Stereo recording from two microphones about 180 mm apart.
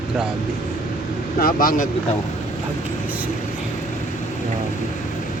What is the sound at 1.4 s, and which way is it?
Speech, 50° left (ahead or behind).